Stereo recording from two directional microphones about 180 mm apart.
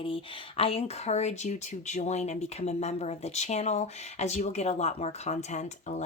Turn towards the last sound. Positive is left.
turn(degrees=40)  # may be behind; listen again after turning